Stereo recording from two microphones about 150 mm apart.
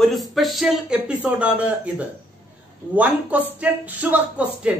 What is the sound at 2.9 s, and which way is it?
Speech, 10° right (ahead or behind).